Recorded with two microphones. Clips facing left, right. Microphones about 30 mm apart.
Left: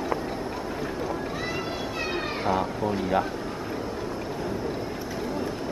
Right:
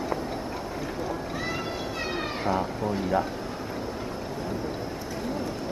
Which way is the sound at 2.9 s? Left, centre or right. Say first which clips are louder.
Even; left.